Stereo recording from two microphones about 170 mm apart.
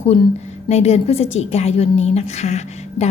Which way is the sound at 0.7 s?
40° left (ahead or behind).